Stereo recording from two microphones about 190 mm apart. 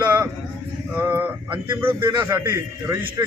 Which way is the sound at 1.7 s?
10° right (ahead or behind).